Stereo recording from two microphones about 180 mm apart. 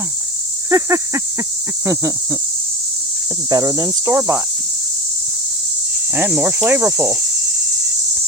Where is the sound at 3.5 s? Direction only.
20° right (ahead or behind).